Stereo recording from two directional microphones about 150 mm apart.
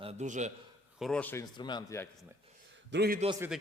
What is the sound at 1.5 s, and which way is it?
Speech, 30° left (ahead or behind).